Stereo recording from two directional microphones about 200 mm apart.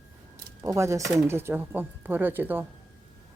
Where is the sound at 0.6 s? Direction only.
15° right (ahead or behind).